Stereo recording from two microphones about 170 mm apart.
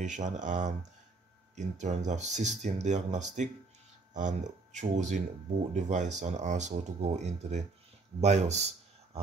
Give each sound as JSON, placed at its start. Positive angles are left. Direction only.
{"t": 0.0, "sound": "speech", "side_deg": -45}